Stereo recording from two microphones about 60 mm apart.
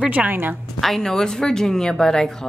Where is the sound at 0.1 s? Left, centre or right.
Right.